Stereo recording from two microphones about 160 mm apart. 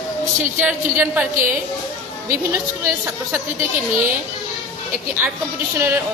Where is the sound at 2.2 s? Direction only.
15° right (ahead or behind).